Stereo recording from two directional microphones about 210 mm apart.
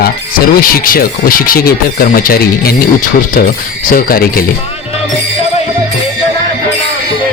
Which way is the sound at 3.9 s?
45° left (ahead or behind).